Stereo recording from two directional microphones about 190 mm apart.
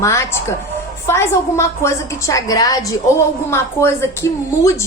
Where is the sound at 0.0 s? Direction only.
15° left (ahead or behind).